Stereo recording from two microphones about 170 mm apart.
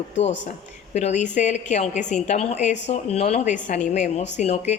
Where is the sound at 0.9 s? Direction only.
45° left (ahead or behind).